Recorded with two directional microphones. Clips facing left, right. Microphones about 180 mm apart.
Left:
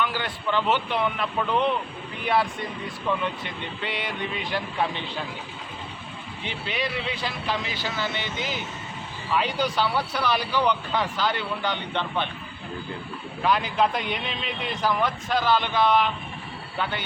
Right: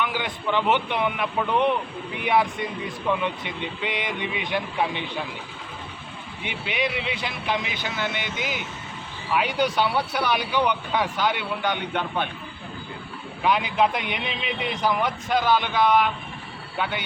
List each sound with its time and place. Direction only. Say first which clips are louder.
0.0 s speech: right 1 dB; 15° right (ahead or behind)
4.3 s speech: right 2 dB; 15° right (ahead or behind)
6.4 s speech: right 3 dB; 15° right (ahead or behind)
13.4 s speech: right 1 dB; 15° right (ahead or behind)